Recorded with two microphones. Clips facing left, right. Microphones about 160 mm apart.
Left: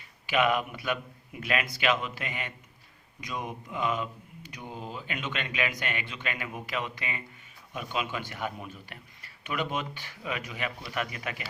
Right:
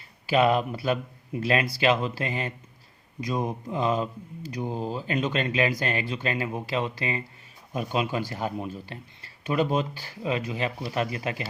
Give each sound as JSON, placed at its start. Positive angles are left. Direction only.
{"t": 0.3, "sound": "speech", "side_deg": -35}